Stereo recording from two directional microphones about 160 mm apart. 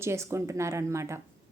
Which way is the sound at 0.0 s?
15° right (ahead or behind).